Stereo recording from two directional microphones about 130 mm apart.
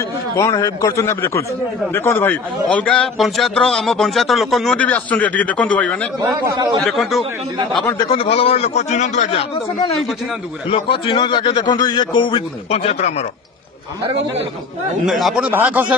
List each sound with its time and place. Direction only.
0.4 s a man's voice: 25° left (ahead or behind); by 4.7 s centre (ahead or behind)
4.7 s a man's voice: 10° left (ahead or behind)
8.1 s a man's voice: 45° left (ahead or behind)
10.7 s a man's voice: 45° left (ahead or behind)
15.0 s speech: centre (ahead or behind)